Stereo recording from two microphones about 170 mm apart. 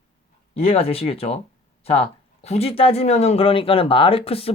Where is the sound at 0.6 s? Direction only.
35° left (ahead or behind).